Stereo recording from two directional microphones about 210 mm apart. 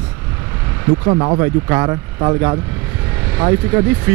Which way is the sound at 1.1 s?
20° right (ahead or behind).